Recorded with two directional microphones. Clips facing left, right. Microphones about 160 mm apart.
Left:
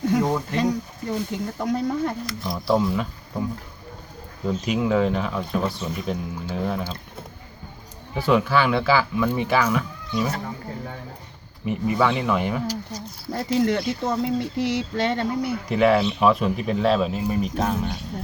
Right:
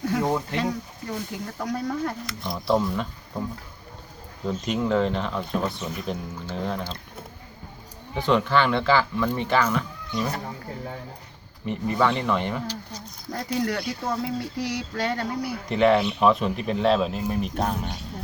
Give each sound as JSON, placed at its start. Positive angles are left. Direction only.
{"t": 0.1, "sound": "a sound", "side_deg": 20}
{"t": 1.5, "sound": "speech", "side_deg": 20}
{"t": 2.2, "sound": "speech", "side_deg": 0}
{"t": 4.4, "sound": "speech", "side_deg": 5}
{"t": 8.3, "sound": "speech", "side_deg": 5}
{"t": 11.6, "sound": "speech", "side_deg": 10}
{"t": 13.3, "sound": "speech", "side_deg": 30}
{"t": 15.7, "sound": "speech", "side_deg": 5}